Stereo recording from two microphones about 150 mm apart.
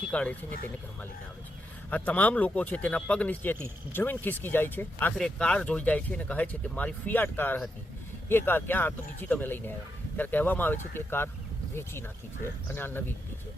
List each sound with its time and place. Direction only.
0.1 s speech: 5° left (ahead or behind)
1.9 s speech: 10° left (ahead or behind)